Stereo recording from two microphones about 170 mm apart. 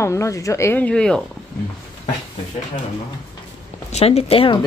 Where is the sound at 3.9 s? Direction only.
40° left (ahead or behind).